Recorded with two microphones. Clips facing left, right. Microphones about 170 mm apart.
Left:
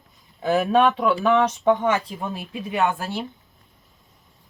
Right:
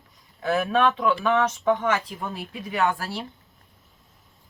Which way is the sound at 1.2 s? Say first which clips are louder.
Left 3 dB; 20° left (ahead or behind).